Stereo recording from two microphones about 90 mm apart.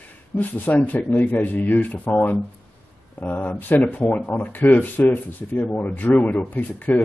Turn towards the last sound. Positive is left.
turn(degrees=20)  # may be behind; listen again after turning